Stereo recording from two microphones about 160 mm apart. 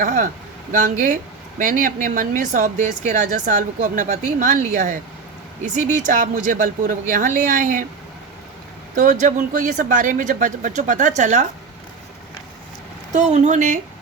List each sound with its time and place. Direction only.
0.0 s a man's voice: 55° right (ahead or behind)
9.0 s a woman's voice: 55° right (ahead or behind)
13.1 s a woman's voice: 45° right (ahead or behind)